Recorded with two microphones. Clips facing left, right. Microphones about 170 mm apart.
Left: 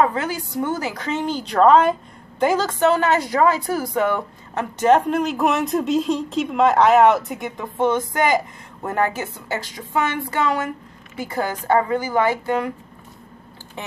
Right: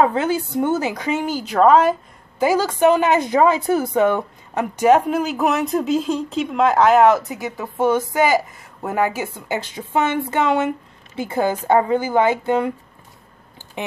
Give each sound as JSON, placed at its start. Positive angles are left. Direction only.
{"t": 0.0, "sound": "a woman's voice", "side_deg": -25}
{"t": 9.6, "sound": "speech", "side_deg": -20}